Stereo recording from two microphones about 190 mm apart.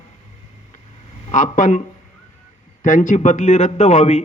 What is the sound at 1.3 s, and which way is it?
Speech, 40° left (ahead or behind).